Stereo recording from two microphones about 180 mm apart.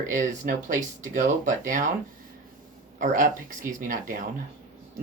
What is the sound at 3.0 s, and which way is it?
Speech, 45° right (ahead or behind).